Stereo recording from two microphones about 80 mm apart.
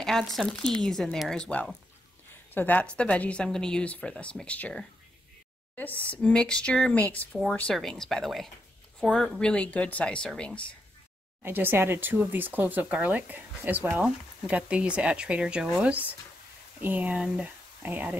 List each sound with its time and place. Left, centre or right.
0.0 s speech: centre
1.5 s speech: centre
6.2 s speech: centre
9.4 s speech: centre
11.4 s a woman's voice: right